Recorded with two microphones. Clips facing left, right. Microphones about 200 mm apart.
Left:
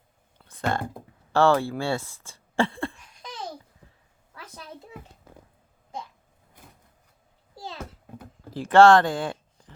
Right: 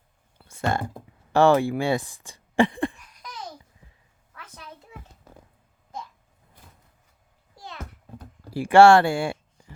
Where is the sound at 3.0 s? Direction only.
25° left (ahead or behind).